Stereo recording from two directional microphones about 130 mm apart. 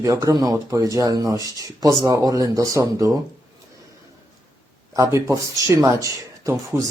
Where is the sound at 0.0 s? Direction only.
25° right (ahead or behind).